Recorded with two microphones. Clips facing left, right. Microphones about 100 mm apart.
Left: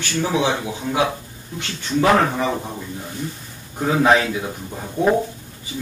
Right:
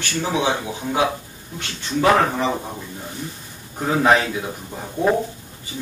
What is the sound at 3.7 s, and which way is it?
A man's voice, centre (ahead or behind).